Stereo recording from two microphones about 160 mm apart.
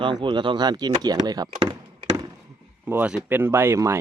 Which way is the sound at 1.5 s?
30° right (ahead or behind).